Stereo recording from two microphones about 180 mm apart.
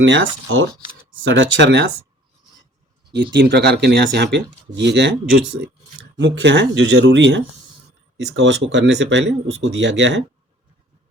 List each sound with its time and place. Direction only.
0.0 s speech: 90° right
3.3 s speech: 70° right (ahead or behind)
6.1 s speech: 75° right (ahead or behind)